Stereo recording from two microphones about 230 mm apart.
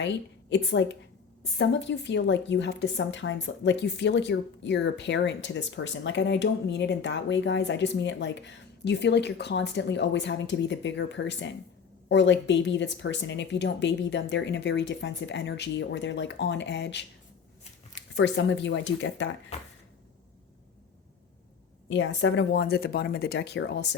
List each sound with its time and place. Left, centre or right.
0.5 s a woman's voice: left
18.1 s a woman's voice: left
21.8 s a woman's voice: left